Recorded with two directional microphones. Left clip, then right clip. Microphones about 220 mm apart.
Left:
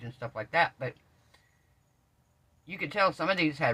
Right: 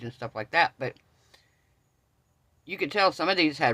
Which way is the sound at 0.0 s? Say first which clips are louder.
Right 3 dB; 55° right (ahead or behind).